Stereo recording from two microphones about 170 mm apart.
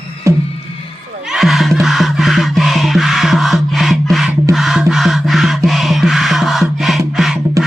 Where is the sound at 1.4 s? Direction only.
Centre (ahead or behind).